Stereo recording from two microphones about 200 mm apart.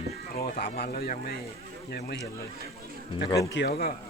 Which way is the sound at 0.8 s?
50° left (ahead or behind).